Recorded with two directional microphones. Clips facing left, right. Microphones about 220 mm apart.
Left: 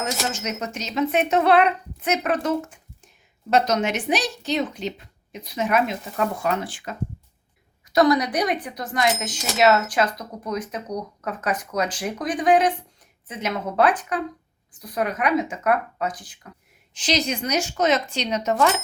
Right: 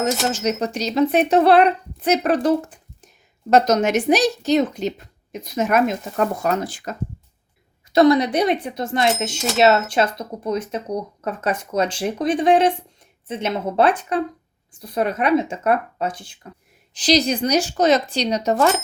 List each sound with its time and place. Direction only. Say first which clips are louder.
0.3 s speech: right 7 dB; 35° right (ahead or behind)
7.9 s speech: right 4 dB; 25° right (ahead or behind)